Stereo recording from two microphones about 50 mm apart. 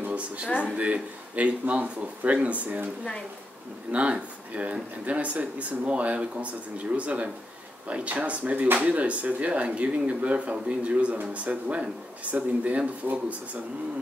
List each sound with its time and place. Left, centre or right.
0.7 s speech: right
3.9 s speech: right